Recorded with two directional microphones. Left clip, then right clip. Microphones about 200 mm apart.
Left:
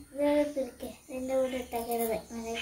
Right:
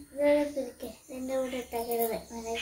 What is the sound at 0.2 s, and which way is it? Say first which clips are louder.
Child singing: right 2 dB; 20° left (ahead or behind).